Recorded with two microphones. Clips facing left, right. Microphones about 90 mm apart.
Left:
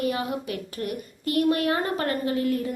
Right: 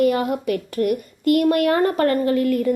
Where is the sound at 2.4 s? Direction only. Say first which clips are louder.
Right 6 dB; 60° right (ahead or behind).